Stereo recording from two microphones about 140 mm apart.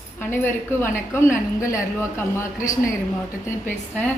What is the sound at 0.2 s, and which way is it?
A woman's voice, 15° left (ahead or behind).